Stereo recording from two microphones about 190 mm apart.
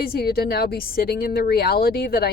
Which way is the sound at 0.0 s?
50° left (ahead or behind).